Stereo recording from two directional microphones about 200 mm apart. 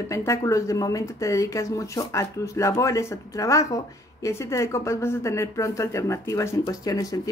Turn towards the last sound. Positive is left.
turn(degrees=15)  # may be behind; listen again after turning